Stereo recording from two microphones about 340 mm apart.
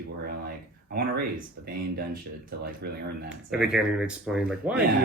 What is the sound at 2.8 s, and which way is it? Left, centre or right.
Speech, right.